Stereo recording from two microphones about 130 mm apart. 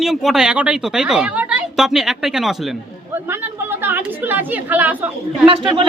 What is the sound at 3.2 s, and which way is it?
A woman's voice, 15° right (ahead or behind).